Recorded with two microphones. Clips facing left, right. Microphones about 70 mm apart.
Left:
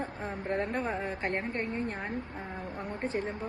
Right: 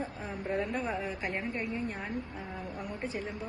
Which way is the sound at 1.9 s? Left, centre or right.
Left.